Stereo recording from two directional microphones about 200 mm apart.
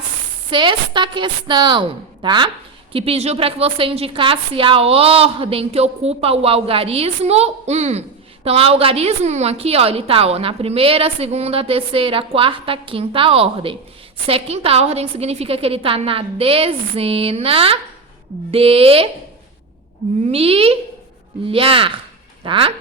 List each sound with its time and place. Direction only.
0.5 s a woman's voice: 25° right (ahead or behind)
20.2 s a woman's voice: 30° right (ahead or behind)